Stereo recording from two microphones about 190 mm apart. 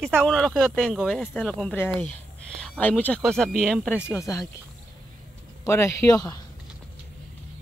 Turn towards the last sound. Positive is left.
turn(degrees=20)  # may be behind; listen again after turning